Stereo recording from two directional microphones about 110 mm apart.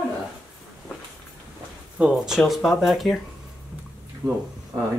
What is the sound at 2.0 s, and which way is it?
Speech, 5° right (ahead or behind).